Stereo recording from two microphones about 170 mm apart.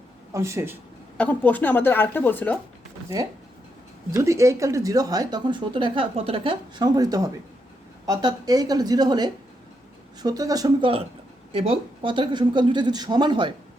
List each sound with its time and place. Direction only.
0.3 s speech: 15° right (ahead or behind)
1.1 s speech: 10° left (ahead or behind)
4.1 s speech: 20° right (ahead or behind)